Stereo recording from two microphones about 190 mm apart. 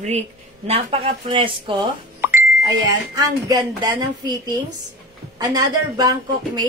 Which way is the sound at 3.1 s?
20° right (ahead or behind).